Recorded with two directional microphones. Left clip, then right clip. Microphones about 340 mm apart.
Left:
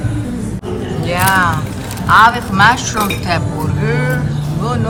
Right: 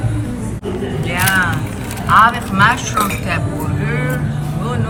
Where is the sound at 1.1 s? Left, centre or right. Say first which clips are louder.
Left 3 dB; centre.